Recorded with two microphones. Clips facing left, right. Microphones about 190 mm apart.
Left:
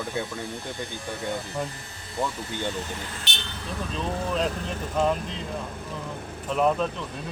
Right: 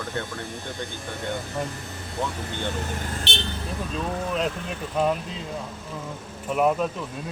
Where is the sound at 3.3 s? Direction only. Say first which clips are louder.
Right 7 dB; 30° right (ahead or behind).